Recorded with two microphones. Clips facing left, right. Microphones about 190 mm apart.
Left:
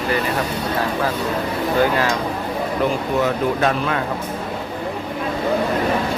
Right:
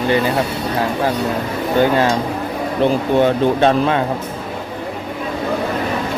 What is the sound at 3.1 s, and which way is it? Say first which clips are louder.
Speech: right 5 dB; 30° right (ahead or behind).